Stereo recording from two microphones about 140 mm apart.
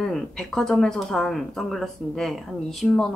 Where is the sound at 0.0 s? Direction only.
5° left (ahead or behind).